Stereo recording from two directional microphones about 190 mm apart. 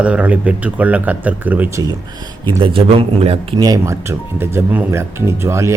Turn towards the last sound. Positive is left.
turn(degrees=-15)  # may be behind; listen again after turning